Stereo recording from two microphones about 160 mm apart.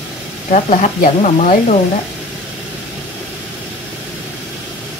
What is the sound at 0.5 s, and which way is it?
Speech, 50° left (ahead or behind).